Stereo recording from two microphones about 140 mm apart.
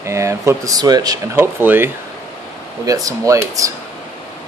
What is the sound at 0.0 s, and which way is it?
Speech, 20° right (ahead or behind).